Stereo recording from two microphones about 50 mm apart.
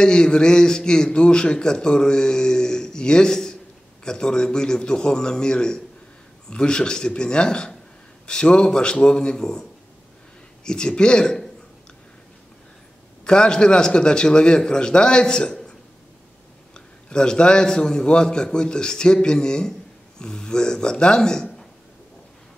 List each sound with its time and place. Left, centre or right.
0.0 s a man's voice: centre
13.2 s a man's voice: centre
16.7 s a man's voice: centre